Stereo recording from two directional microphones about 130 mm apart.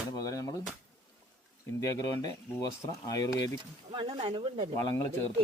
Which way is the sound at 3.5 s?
40° right (ahead or behind).